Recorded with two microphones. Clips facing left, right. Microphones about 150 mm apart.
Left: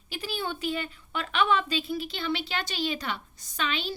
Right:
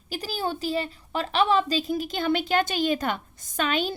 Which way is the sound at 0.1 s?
40° right (ahead or behind).